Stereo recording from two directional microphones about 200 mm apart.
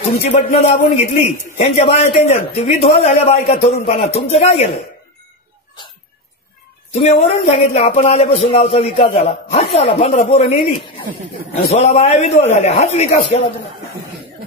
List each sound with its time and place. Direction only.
0.5 s a man's voice: 35° left (ahead or behind)
6.9 s a man's voice: 30° left (ahead or behind)